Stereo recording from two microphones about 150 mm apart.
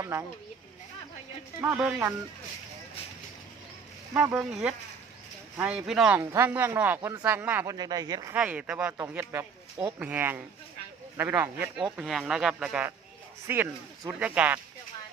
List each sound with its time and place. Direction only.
0.0 s speech: 20° right (ahead or behind)
1.6 s speech: 10° right (ahead or behind)
4.1 s speech: 10° right (ahead or behind)
5.5 s speech: 10° right (ahead or behind)
6.1 s speech: 15° right (ahead or behind)
8.3 s speech: 10° right (ahead or behind)
11.9 s speech: centre (ahead or behind)